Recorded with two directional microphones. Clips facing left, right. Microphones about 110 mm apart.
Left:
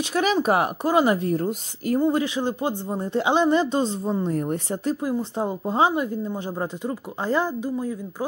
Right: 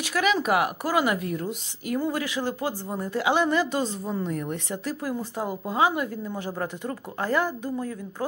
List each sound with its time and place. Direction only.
0.0 s speech: 30° left (ahead or behind)
2.0 s speech: 25° left (ahead or behind)